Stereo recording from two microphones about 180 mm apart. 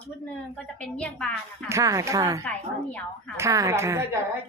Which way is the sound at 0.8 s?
5° left (ahead or behind).